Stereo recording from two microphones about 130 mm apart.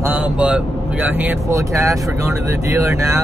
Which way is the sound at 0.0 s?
10° right (ahead or behind).